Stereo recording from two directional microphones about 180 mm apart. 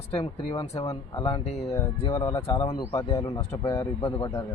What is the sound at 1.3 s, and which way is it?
Speech, 35° left (ahead or behind).